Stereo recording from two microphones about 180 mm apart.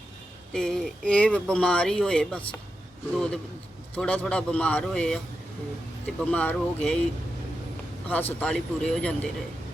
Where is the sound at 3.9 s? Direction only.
5° left (ahead or behind).